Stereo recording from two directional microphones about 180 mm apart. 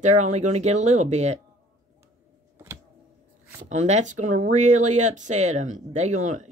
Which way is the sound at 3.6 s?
40° right (ahead or behind).